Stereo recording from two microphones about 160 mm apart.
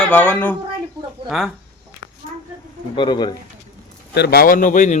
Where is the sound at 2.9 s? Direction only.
30° left (ahead or behind).